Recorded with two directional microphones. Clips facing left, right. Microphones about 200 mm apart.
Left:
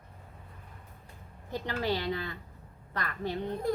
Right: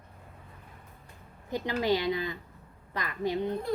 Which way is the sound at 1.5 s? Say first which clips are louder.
Right 4 dB; 15° right (ahead or behind).